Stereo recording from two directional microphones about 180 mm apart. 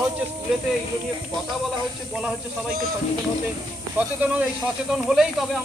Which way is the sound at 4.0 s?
10° right (ahead or behind).